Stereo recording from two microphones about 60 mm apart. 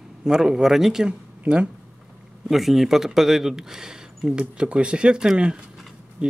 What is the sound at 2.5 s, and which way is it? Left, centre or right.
Speech, centre.